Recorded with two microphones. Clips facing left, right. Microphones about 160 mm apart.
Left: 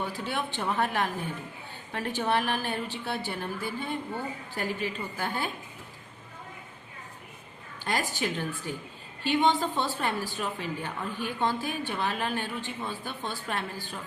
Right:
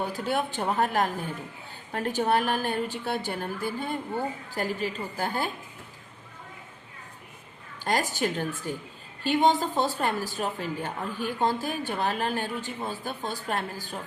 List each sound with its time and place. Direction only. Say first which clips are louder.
0.1 s speech: right 4 dB; 45° right (ahead or behind)
7.9 s speech: right 3 dB; 45° right (ahead or behind)